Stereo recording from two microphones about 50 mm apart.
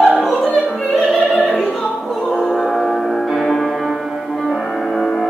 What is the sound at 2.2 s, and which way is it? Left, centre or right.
Music, centre.